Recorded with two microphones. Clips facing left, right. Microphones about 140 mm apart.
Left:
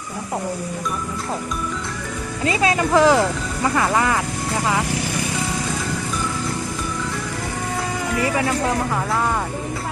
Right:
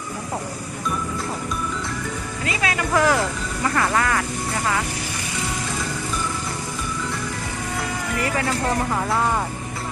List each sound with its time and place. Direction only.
2.4 s speech: 25° left (ahead or behind)